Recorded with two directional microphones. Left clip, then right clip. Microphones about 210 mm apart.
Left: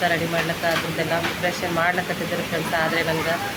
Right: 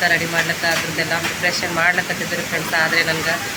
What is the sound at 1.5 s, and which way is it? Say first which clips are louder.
Speech: right 5 dB; 5° left (ahead or behind).